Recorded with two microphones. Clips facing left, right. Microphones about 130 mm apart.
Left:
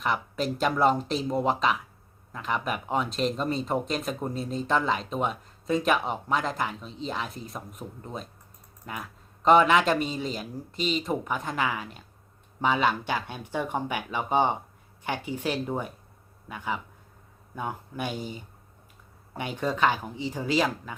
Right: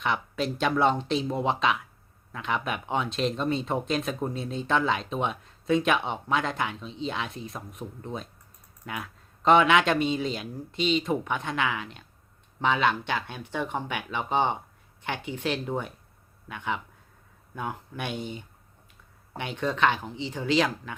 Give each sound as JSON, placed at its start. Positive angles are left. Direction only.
{"t": 0.0, "sound": "speech", "side_deg": 0}
{"t": 15.2, "sound": "speech", "side_deg": 40}
{"t": 15.4, "sound": "speech", "side_deg": 10}
{"t": 19.5, "sound": "speech", "side_deg": 10}